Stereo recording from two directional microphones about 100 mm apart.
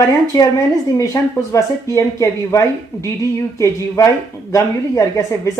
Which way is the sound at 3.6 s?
30° left (ahead or behind).